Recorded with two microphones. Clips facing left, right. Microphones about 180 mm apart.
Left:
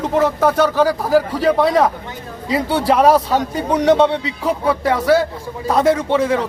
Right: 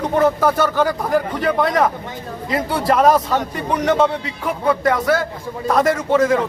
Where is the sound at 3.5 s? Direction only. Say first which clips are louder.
Left 4 dB; 35° left (ahead or behind).